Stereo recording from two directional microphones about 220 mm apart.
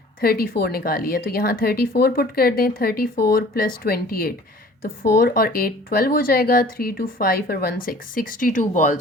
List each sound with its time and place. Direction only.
0.2 s speech: 40° left (ahead or behind)